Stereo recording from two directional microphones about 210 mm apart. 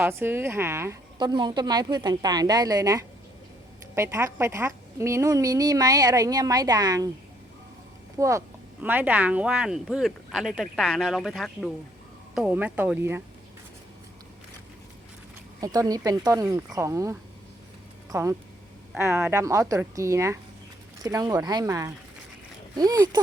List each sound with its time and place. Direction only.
0.0 s a woman's voice: 10° right (ahead or behind)
8.2 s a woman's voice: 15° right (ahead or behind)
15.6 s a woman's voice: 15° right (ahead or behind)